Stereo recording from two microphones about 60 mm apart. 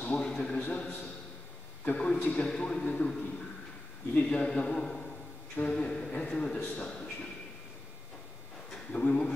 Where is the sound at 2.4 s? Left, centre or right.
Centre.